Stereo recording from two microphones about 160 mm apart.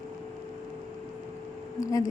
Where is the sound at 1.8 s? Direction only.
20° left (ahead or behind).